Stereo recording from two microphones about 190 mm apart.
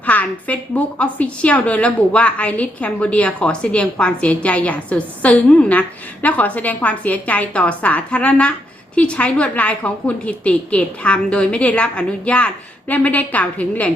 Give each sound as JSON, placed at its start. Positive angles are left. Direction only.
{"t": 0.0, "sound": "a woman's voice", "side_deg": 10}